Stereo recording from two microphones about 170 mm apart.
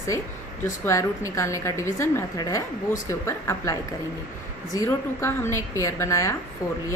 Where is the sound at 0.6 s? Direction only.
15° left (ahead or behind).